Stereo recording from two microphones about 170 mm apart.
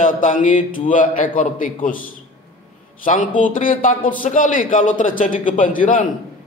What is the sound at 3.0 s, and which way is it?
Mantra, 45° left (ahead or behind).